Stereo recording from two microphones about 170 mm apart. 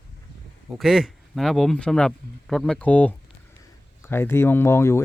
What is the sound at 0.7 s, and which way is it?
Speech, centre (ahead or behind).